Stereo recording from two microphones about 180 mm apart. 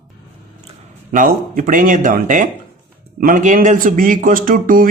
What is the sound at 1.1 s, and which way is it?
Speech, 50° right (ahead or behind).